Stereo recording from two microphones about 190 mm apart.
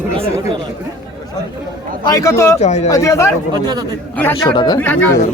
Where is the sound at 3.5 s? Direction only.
20° right (ahead or behind).